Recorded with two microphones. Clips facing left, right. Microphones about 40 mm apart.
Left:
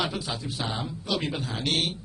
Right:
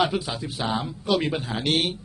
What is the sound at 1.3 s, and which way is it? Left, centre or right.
Speech, right.